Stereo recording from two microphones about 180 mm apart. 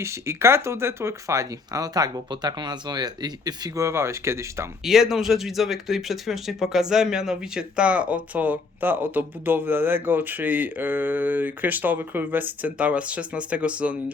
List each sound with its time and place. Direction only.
0.0 s speech: 15° right (ahead or behind)
4.8 s speech: centre (ahead or behind)